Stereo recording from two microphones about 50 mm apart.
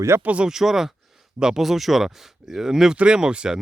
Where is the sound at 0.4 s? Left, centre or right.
Centre.